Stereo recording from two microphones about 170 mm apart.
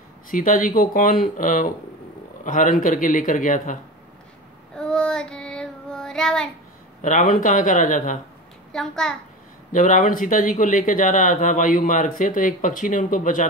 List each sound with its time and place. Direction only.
0.3 s a man's voice: 50° left (ahead or behind)
4.7 s child singing: 5° left (ahead or behind)
7.0 s a man's voice: 50° left (ahead or behind)
8.7 s a child's voice: 5° left (ahead or behind)
9.7 s a man's voice: 50° left (ahead or behind)